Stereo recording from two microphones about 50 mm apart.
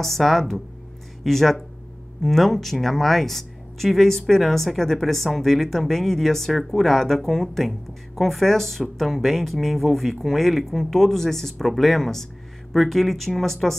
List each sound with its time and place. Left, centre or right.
0.0 s speech: centre